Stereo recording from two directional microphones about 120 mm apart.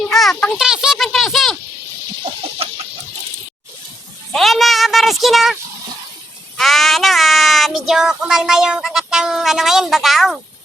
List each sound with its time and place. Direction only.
0.0 s a sound: centre (ahead or behind)
0.4 s speech: centre (ahead or behind)
4.3 s speech: centre (ahead or behind)
6.6 s child singing: centre (ahead or behind)